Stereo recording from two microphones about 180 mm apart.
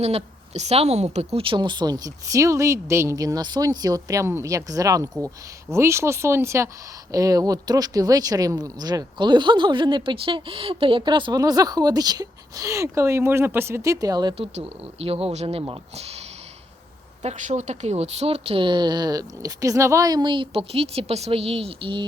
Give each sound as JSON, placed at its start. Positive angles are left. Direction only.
{"t": 0.0, "sound": "speech", "side_deg": -35}
{"t": 15.0, "sound": "speech", "side_deg": -35}
{"t": 17.2, "sound": "speech", "side_deg": -40}